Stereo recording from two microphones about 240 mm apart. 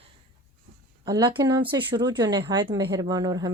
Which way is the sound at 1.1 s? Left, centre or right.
Centre.